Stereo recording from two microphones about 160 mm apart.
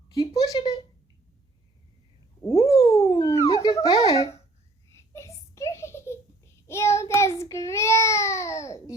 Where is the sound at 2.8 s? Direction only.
40° left (ahead or behind).